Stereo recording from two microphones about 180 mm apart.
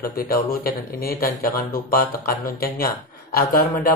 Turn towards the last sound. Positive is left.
turn(degrees=55)  # may be behind; listen again after turning